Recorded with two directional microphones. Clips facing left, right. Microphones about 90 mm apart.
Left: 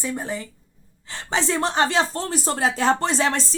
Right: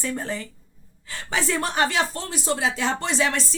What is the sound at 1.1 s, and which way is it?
Speech, 25° left (ahead or behind).